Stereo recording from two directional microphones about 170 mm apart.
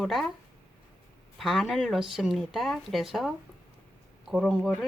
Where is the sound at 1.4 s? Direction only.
Centre (ahead or behind).